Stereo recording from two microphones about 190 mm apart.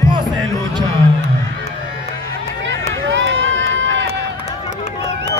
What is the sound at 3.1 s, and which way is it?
Run, 75° right (ahead or behind).